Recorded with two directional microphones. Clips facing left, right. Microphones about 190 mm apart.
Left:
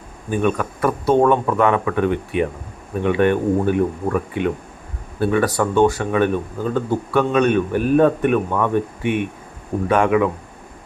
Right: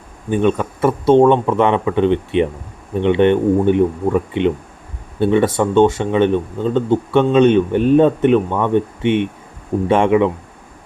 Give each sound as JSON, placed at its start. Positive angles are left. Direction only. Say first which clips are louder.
{"t": 0.3, "sound": "speech", "louder": "right 4 dB", "side_deg": -25}